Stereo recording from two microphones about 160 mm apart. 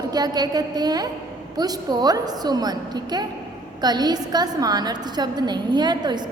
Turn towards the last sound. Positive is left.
turn(degrees=-25)  # may be behind; listen again after turning